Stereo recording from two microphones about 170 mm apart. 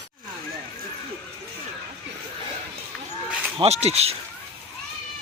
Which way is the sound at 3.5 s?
40° right (ahead or behind).